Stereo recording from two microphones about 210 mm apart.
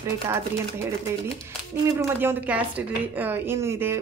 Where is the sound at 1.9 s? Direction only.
10° right (ahead or behind).